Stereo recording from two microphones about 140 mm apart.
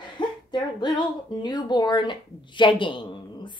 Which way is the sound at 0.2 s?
35° left (ahead or behind).